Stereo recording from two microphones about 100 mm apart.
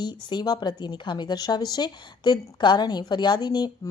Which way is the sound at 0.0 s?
45° left (ahead or behind).